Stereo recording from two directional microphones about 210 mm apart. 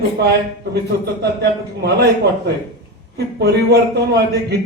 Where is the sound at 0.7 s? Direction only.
50° right (ahead or behind).